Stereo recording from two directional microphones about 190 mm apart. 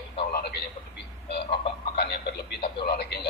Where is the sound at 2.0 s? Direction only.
60° left (ahead or behind).